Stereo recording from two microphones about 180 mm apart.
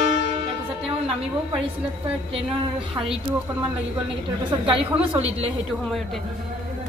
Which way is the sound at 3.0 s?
30° right (ahead or behind).